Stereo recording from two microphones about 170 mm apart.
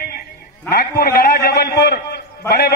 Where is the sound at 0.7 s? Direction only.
60° left (ahead or behind).